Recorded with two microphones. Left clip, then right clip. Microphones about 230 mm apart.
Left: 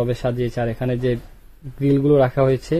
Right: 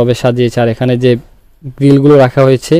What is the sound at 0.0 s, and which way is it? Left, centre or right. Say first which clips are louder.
Speech: right 11 dB; right.